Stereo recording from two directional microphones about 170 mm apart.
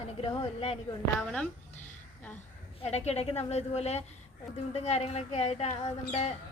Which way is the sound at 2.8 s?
40° left (ahead or behind).